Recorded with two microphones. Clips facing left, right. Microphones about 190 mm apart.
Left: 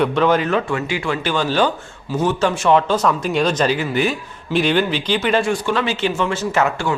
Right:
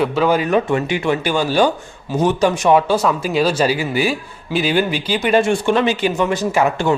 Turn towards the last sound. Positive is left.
turn(degrees=-15)  # may be behind; listen again after turning